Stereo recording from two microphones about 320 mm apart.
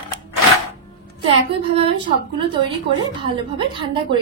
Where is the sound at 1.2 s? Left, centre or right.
Centre.